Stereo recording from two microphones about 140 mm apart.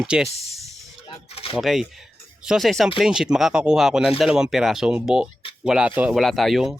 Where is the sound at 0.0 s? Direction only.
5° right (ahead or behind).